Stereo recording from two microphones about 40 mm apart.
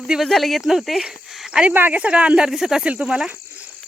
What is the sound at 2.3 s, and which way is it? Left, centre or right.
Speech, centre.